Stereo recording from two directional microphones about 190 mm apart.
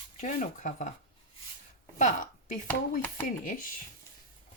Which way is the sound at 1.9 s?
40° left (ahead or behind).